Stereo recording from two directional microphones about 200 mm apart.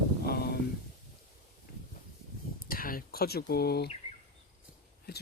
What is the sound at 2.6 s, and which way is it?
Speech, 45° left (ahead or behind).